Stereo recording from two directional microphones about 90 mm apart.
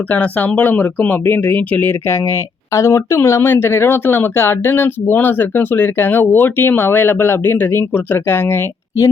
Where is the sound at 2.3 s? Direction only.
35° left (ahead or behind).